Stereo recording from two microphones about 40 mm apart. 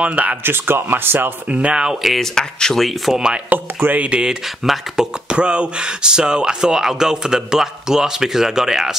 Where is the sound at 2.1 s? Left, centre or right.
Centre.